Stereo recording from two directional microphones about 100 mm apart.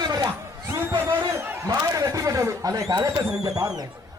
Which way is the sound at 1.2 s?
25° right (ahead or behind).